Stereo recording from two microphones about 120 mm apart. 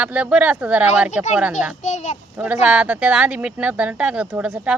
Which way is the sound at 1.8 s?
80° left.